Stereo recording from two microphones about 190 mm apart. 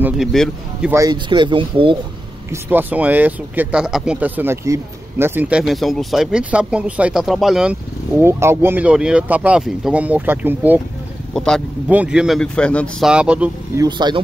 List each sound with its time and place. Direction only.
0.0 s speech: centre (ahead or behind)
0.9 s speech: 20° right (ahead or behind)
2.5 s speech: 10° right (ahead or behind)
8.2 s speech: 15° right (ahead or behind)
11.3 s speech: 5° left (ahead or behind)
13.1 s speech: 5° right (ahead or behind)
13.7 s speech: 25° right (ahead or behind)